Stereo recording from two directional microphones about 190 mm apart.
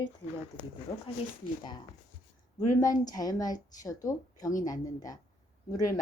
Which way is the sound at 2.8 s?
20° left (ahead or behind).